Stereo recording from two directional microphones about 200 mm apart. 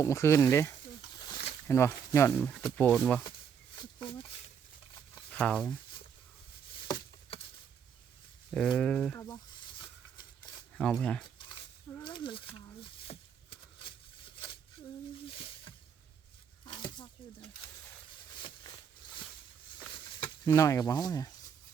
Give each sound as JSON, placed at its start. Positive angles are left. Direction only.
{"t": 0.0, "sound": "speech", "side_deg": 15}
{"t": 1.2, "sound": "a sound", "side_deg": 25}
{"t": 1.6, "sound": "speech", "side_deg": 15}
{"t": 3.8, "sound": "speech", "side_deg": 25}
{"t": 5.3, "sound": "speech", "side_deg": 5}
{"t": 8.4, "sound": "speech", "side_deg": 0}
{"t": 10.8, "sound": "speech", "side_deg": 5}
{"t": 12.0, "sound": "a sound", "side_deg": 25}
{"t": 15.3, "sound": "a sound", "side_deg": 25}
{"t": 16.6, "sound": "snake", "side_deg": 25}
{"t": 18.4, "sound": "a sound", "side_deg": 20}
{"t": 20.2, "sound": "speech", "side_deg": 15}